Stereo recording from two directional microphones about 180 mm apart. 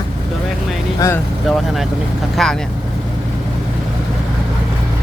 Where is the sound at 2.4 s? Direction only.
Centre (ahead or behind).